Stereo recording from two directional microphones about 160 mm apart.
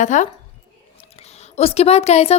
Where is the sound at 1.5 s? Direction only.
40° left (ahead or behind).